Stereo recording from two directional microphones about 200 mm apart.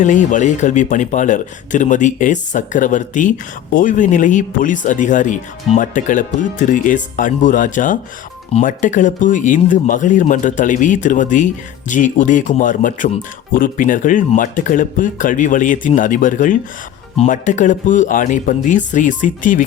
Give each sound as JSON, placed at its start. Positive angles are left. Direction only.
{"t": 0.0, "sound": "speech", "side_deg": 40}